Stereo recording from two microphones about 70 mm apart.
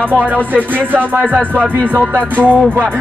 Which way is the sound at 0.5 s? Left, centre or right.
Right.